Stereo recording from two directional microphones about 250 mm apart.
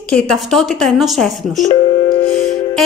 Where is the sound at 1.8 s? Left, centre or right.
Left.